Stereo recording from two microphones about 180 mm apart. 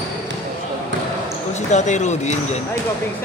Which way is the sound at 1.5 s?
40° left (ahead or behind).